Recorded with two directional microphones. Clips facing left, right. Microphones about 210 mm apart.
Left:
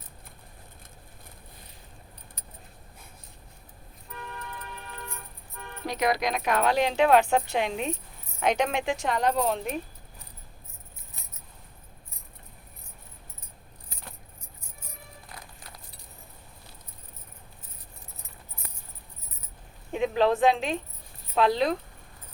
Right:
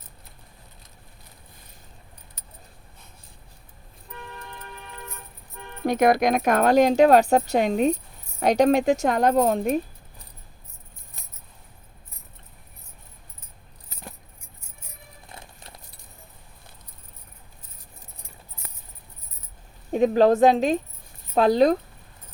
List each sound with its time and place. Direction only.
5.8 s speech: 50° right (ahead or behind)
15.3 s vehicle: 25° right (ahead or behind)
19.9 s a woman's voice: 40° right (ahead or behind)